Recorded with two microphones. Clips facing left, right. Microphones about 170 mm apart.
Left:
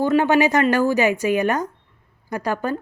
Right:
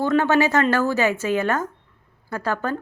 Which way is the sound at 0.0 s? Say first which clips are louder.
Left 2 dB; 15° left (ahead or behind).